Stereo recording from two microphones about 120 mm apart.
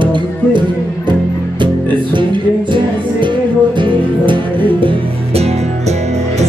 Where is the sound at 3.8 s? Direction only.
40° right (ahead or behind).